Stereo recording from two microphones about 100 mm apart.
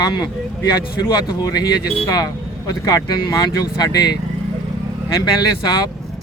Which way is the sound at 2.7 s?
40° left (ahead or behind).